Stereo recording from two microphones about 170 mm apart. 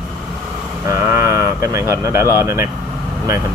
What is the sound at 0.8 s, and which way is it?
Speech, 20° right (ahead or behind).